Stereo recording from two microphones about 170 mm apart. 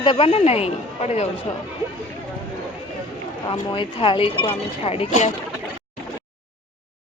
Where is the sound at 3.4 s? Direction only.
30° left (ahead or behind); by 5.3 s 45° left (ahead or behind).